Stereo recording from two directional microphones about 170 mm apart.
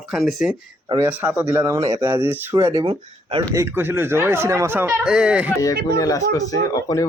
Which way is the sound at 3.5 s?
15° right (ahead or behind).